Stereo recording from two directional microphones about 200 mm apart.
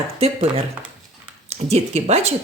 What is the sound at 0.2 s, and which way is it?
Speech, 25° right (ahead or behind).